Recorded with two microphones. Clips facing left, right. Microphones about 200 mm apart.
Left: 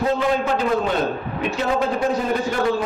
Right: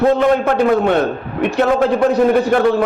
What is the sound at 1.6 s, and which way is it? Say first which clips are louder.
Speech: right 8 dB; 65° right (ahead or behind).